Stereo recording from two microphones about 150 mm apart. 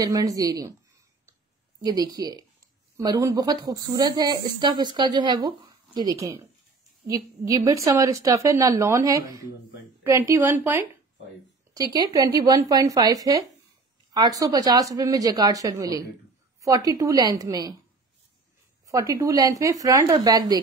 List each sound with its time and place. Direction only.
0.0 s speech: 25° right (ahead or behind)
1.9 s a woman's voice: 25° right (ahead or behind)
18.9 s speech: 20° right (ahead or behind)